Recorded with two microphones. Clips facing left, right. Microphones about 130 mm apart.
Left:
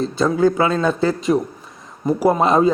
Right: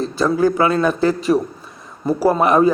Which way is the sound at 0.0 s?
20° left (ahead or behind).